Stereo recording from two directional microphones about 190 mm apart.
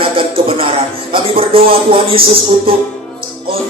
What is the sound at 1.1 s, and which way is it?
Music, 30° right (ahead or behind).